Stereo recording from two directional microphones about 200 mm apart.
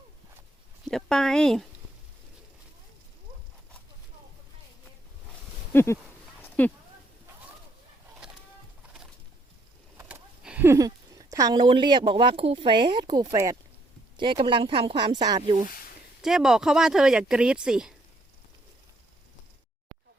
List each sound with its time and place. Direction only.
0.9 s speech: centre (ahead or behind)
5.7 s speech: 15° left (ahead or behind)
10.0 s speech: 5° right (ahead or behind)
16.2 s speech: centre (ahead or behind)